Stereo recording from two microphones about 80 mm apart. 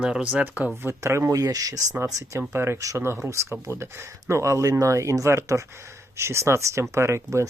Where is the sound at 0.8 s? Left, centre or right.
Right.